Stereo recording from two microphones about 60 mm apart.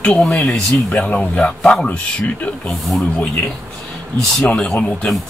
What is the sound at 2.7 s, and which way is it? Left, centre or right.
Speech, centre.